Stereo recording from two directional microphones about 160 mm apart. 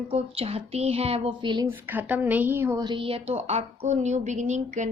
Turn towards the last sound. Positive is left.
turn(degrees=-50)  # may be behind; listen again after turning